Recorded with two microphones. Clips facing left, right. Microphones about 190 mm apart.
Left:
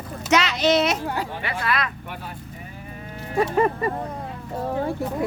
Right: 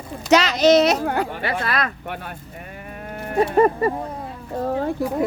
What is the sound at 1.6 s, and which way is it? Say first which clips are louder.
Speech: left 2 dB; 40° right (ahead or behind).